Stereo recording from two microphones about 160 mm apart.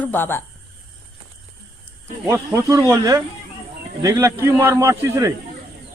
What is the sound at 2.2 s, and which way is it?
A man's voice, 15° right (ahead or behind).